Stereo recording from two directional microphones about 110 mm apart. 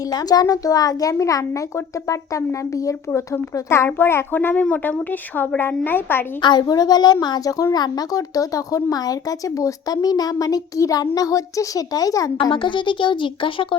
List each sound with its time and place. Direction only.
0.1 s speech: 35° left (ahead or behind); by 6.2 s 20° left (ahead or behind)
6.4 s speech: 40° left (ahead or behind)
12.5 s speech: 45° left (ahead or behind)